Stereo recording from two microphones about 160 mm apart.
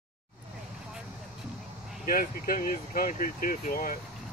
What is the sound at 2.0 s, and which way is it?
Speech, 65° left (ahead or behind).